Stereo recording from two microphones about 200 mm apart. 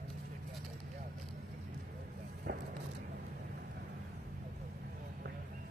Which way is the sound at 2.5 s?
45° right (ahead or behind).